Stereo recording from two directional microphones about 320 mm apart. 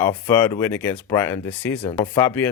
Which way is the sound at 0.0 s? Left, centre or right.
Centre.